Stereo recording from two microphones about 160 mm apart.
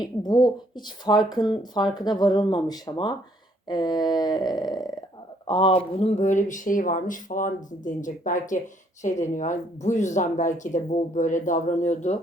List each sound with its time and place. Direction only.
0.0 s speech: 25° left (ahead or behind); by 12.2 s 45° left (ahead or behind)